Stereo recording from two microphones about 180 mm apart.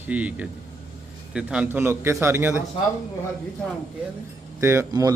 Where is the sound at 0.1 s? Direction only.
10° right (ahead or behind).